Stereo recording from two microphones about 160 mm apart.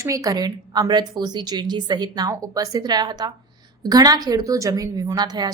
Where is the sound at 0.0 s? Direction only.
20° right (ahead or behind).